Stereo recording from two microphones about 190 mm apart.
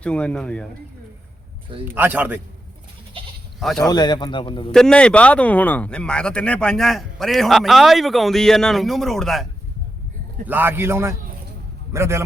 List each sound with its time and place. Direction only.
0.0 s speech: 5° left (ahead or behind)
1.8 s a man's voice: 10° right (ahead or behind)
3.6 s speech: centre (ahead or behind)
3.8 s a man's voice: 20° left (ahead or behind)
4.7 s speech: 5° left (ahead or behind)
10.4 s a man's voice: 10° right (ahead or behind)